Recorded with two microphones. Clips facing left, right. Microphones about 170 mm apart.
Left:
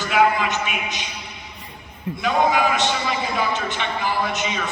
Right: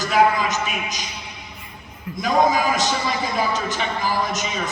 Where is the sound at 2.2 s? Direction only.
40° right (ahead or behind).